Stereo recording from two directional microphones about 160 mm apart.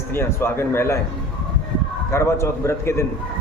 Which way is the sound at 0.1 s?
15° left (ahead or behind).